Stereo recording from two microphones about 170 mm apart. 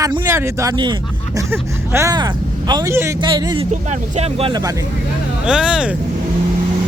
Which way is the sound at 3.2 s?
25° right (ahead or behind).